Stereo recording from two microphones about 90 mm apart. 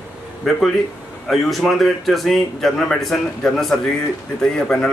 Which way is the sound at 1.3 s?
Centre (ahead or behind).